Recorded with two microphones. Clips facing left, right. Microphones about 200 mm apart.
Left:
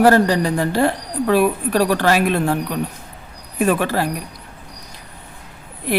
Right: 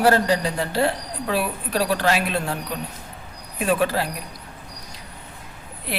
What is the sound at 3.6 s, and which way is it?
Speech, 50° left (ahead or behind).